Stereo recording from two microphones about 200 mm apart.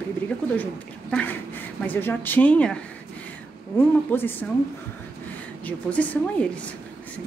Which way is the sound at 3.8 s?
10° left (ahead or behind).